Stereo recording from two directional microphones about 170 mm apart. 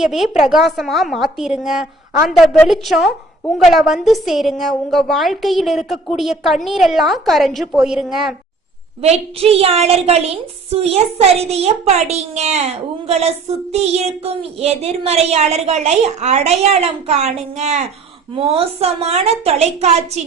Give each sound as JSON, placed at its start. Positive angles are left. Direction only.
{"t": 0.0, "sound": "a woman's voice", "side_deg": 0}
{"t": 9.0, "sound": "a child's voice", "side_deg": -40}